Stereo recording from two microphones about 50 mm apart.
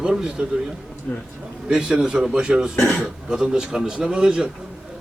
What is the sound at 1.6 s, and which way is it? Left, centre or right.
Speech, centre.